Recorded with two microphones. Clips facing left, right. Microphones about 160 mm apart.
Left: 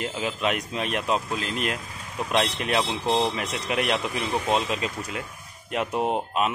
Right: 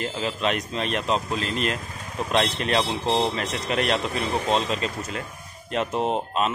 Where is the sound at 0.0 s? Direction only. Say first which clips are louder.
Right 1 dB; 10° left (ahead or behind).